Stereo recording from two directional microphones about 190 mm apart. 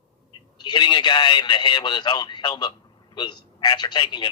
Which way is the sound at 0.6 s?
25° left (ahead or behind).